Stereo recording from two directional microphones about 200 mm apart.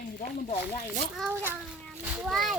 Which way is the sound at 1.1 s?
5° right (ahead or behind).